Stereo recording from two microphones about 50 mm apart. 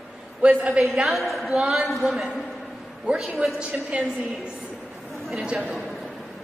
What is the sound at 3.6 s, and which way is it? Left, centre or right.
A woman's voice, centre.